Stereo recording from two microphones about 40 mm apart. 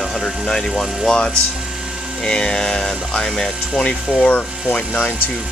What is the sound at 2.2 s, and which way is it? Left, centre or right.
Music, left.